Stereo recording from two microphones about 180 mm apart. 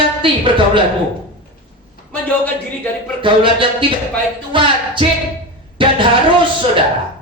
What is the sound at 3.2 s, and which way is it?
A woman's voice, 30° right (ahead or behind).